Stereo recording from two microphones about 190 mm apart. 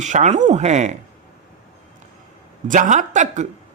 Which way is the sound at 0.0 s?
40° right (ahead or behind).